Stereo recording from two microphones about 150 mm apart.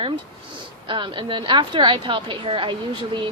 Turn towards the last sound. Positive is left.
turn(degrees=-35)  # may be behind; listen again after turning